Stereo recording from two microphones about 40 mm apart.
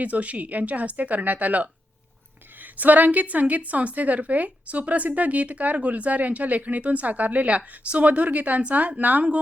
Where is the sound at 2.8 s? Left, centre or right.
Right.